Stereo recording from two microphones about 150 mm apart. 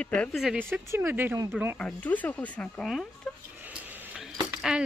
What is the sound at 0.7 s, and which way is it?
Speech, 15° right (ahead or behind).